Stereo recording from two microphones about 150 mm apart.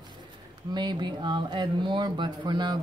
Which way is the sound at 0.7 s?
30° right (ahead or behind).